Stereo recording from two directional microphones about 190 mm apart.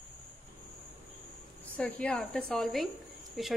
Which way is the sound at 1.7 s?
5° left (ahead or behind).